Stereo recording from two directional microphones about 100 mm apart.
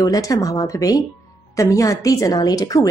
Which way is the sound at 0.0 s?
35° left (ahead or behind).